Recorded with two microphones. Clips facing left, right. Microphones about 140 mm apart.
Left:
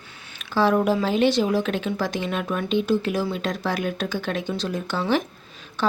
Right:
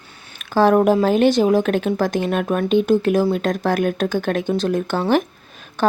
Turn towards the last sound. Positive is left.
turn(degrees=-50)  # may be behind; listen again after turning